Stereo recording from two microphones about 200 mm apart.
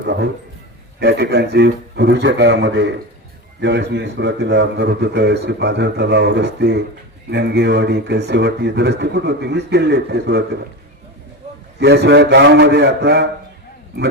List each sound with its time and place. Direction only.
0.0 s a man's voice: 60° right (ahead or behind)
11.8 s speech: 55° right (ahead or behind)